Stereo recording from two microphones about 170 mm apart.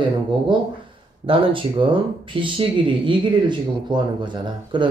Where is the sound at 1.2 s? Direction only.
30° right (ahead or behind).